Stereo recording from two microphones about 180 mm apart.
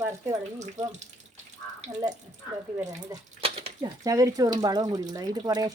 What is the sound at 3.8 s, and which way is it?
Speech, 20° right (ahead or behind).